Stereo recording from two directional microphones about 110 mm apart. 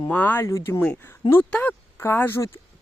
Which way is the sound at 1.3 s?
15° left (ahead or behind).